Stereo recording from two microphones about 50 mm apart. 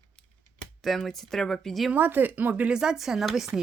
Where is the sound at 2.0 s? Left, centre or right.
Right.